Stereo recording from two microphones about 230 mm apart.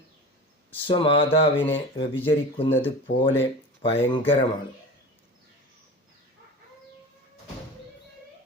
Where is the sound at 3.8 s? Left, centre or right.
Left.